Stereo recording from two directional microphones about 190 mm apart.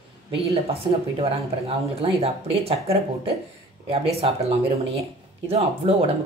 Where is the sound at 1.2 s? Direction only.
30° right (ahead or behind).